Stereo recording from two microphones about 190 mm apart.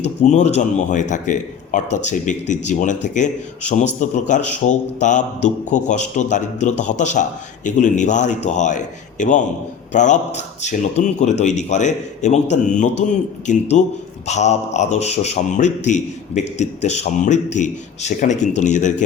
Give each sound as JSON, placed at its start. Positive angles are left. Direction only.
{"t": 0.2, "sound": "speech", "side_deg": 40}